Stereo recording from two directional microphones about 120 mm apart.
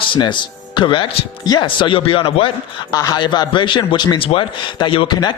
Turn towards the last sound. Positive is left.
turn(degrees=45)  # may be behind; listen again after turning